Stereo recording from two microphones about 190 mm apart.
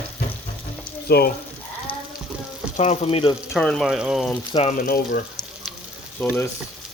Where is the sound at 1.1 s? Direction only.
55° left (ahead or behind).